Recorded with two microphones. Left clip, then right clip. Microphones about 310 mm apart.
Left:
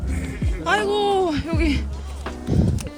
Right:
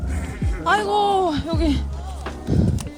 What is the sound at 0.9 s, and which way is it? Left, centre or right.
Speech, centre.